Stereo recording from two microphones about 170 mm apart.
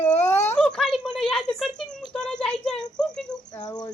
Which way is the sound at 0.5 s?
Centre (ahead or behind).